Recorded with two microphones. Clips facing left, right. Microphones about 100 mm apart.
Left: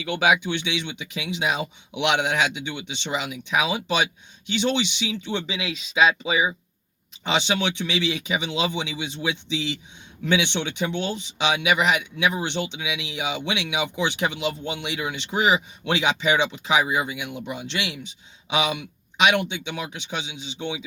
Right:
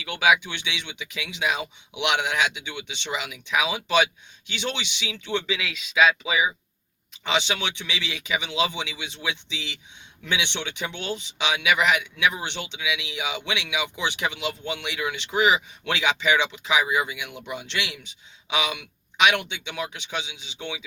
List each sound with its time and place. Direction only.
0.1 s speech: 30° left (ahead or behind)
5.0 s speech: 25° left (ahead or behind)
17.7 s speech: 20° left (ahead or behind)